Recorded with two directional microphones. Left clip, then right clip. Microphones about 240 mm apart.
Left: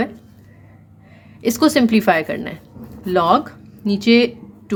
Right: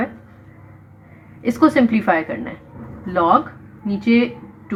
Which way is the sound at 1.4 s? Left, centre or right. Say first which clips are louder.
Even; left.